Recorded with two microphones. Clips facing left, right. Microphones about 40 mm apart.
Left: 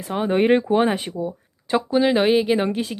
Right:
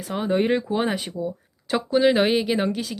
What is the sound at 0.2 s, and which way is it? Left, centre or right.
Speech, left.